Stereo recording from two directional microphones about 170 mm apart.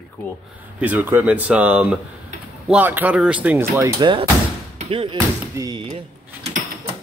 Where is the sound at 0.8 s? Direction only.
10° right (ahead or behind).